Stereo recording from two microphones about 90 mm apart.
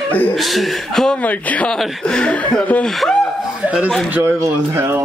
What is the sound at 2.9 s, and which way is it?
Speech, centre (ahead or behind).